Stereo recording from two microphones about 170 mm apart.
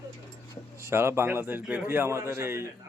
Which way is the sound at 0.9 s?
15° right (ahead or behind).